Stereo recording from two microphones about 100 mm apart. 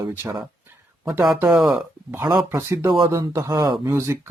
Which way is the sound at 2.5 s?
30° right (ahead or behind).